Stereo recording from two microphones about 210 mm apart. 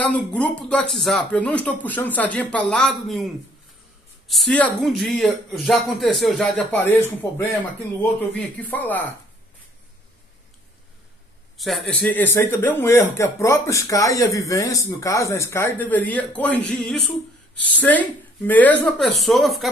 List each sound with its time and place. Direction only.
0.0 s speech: 5° left (ahead or behind)
4.3 s speech: 5° left (ahead or behind)
8.3 s speech: 5° left (ahead or behind)
11.5 s speech: centre (ahead or behind)